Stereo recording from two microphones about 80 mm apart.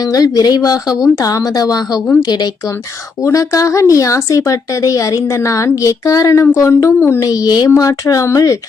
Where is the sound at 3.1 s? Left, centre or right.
Left.